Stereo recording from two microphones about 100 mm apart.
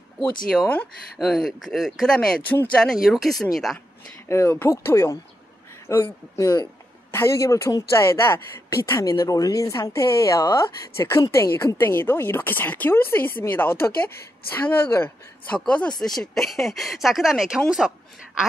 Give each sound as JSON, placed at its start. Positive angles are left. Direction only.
{"t": 1.1, "sound": "speech", "side_deg": 0}
{"t": 4.3, "sound": "speech", "side_deg": 25}
{"t": 7.1, "sound": "speech", "side_deg": 25}
{"t": 8.9, "sound": "speech", "side_deg": 35}
{"t": 15.0, "sound": "speech", "side_deg": 10}